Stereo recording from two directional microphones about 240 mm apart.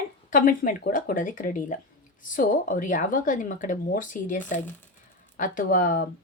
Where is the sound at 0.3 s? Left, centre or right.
Left.